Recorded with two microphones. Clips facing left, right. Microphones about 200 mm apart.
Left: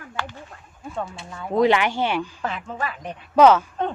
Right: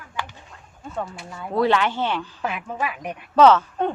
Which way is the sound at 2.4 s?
10° right (ahead or behind).